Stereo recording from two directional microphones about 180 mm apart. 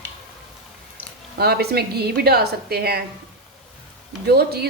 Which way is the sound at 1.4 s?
60° right (ahead or behind).